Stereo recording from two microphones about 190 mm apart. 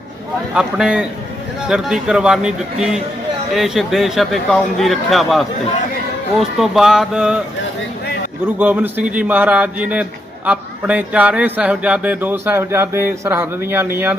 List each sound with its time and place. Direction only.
0.5 s speech: 5° right (ahead or behind)
8.5 s a man's voice: 10° right (ahead or behind)